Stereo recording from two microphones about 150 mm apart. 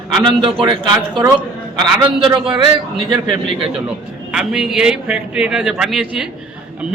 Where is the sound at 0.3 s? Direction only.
35° right (ahead or behind).